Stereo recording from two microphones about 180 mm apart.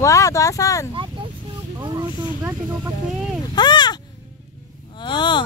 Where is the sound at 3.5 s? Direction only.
25° left (ahead or behind).